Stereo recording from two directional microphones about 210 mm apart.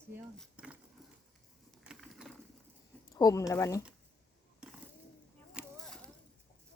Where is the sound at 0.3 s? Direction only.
5° right (ahead or behind).